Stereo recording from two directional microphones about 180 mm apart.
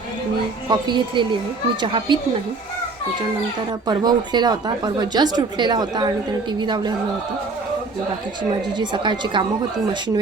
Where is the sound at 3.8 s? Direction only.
25° right (ahead or behind).